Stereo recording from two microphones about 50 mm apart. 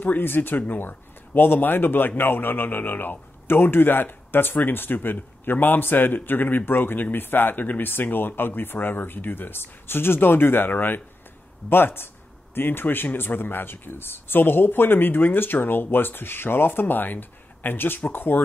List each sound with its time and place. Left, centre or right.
0.0 s speech: left